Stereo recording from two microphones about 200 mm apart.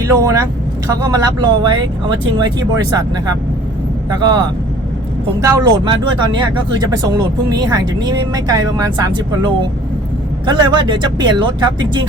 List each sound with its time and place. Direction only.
0.0 s speech: 15° right (ahead or behind)
4.1 s speech: 20° right (ahead or behind)